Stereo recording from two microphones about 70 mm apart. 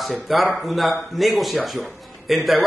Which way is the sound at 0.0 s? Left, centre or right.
Centre.